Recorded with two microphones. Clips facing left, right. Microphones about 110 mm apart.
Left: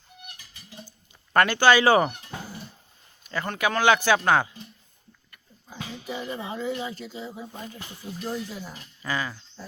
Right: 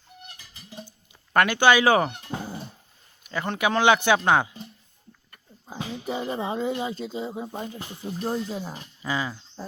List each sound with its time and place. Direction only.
1.3 s speech: 10° right (ahead or behind)
2.3 s cat: 25° right (ahead or behind)
3.2 s speech: 15° right (ahead or behind)
5.3 s speech: 35° right (ahead or behind)
9.0 s speech: 20° right (ahead or behind)